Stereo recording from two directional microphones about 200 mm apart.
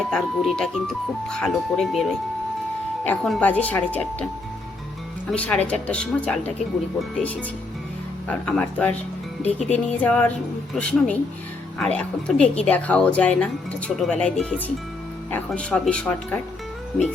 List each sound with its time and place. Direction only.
0.1 s speech: 5° left (ahead or behind)
5.3 s speech: 5° left (ahead or behind)
8.3 s speech: 5° left (ahead or behind)
9.4 s speech: 35° left (ahead or behind)
9.7 s speech: 10° left (ahead or behind)